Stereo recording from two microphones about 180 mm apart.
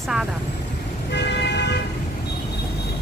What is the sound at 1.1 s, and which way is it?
Vehicle, 70° left (ahead or behind).